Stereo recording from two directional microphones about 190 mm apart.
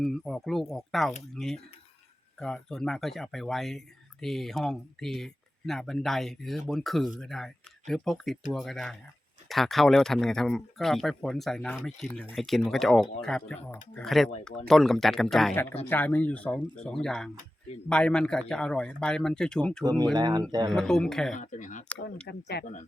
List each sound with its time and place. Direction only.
0.0 s speech: centre (ahead or behind)
19.8 s speech: 20° right (ahead or behind)
20.7 s speech: 5° left (ahead or behind)
21.3 s speech: 40° left (ahead or behind)
22.3 s speech: 60° left (ahead or behind)